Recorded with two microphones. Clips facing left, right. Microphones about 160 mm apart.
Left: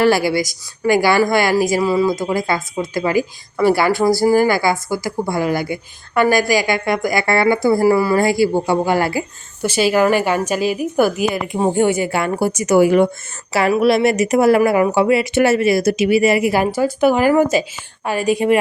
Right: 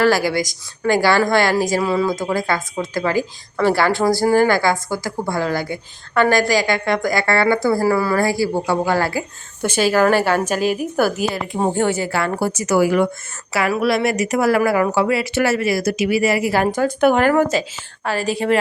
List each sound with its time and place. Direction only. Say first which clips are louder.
0.4 s speech: left 2 dB; 10° left (ahead or behind)
11.6 s a woman's voice: left 3 dB; 15° left (ahead or behind)